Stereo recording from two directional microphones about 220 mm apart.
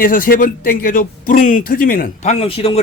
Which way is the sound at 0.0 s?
40° left (ahead or behind).